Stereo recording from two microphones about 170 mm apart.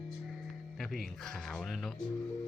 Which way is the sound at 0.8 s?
Centre (ahead or behind).